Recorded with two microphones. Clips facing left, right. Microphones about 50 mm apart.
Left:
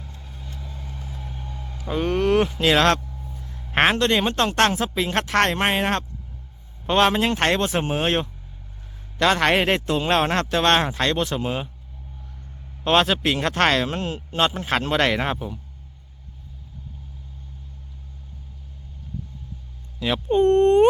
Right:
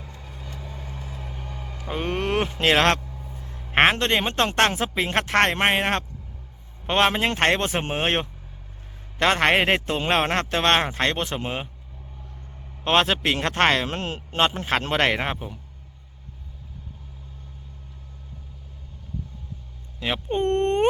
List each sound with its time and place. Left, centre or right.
0.3 s vehicle: right
0.6 s vehicle: right
1.1 s a sound: right
1.9 s speech: right
3.0 s a sound: right
3.3 s a sound: right
3.7 s a man's voice: right
12.8 s a man's voice: right
20.3 s a man's voice: right